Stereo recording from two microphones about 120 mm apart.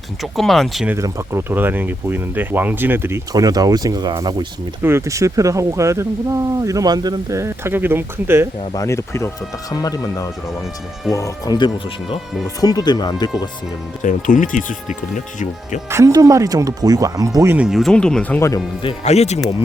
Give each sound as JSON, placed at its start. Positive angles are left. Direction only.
{"t": 0.2, "sound": "speech", "side_deg": 0}
{"t": 0.9, "sound": "speech", "side_deg": -25}
{"t": 3.3, "sound": "speech", "side_deg": -30}
{"t": 4.8, "sound": "speech", "side_deg": -20}
{"t": 8.7, "sound": "speech", "side_deg": 25}
{"t": 14.0, "sound": "speech", "side_deg": 90}
{"t": 15.9, "sound": "speech", "side_deg": -25}
{"t": 17.6, "sound": "speech", "side_deg": -5}
{"t": 17.9, "sound": "speech", "side_deg": 10}
{"t": 18.3, "sound": "speech", "side_deg": 25}
{"t": 19.0, "sound": "speech", "side_deg": 65}